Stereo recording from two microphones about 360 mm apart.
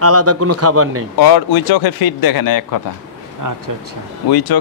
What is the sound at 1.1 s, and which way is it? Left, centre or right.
Speech, left.